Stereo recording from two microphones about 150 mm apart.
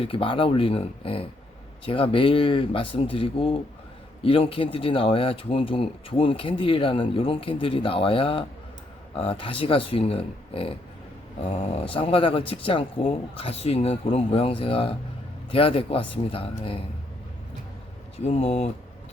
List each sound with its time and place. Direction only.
0.0 s speech: 35° left (ahead or behind)
18.3 s speech: 45° left (ahead or behind)